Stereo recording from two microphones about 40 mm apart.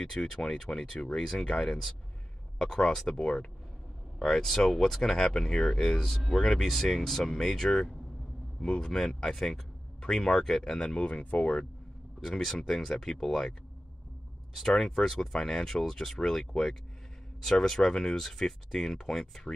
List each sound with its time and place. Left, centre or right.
0.0 s speech: centre
1.6 s speech: centre
4.2 s speech: centre
6.3 s speech: centre
10.8 s speech: left
12.2 s speech: centre
12.5 s speech: centre
14.6 s speech: centre